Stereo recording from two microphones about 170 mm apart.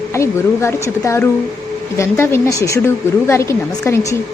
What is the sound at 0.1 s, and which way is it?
A woman's voice, 15° left (ahead or behind).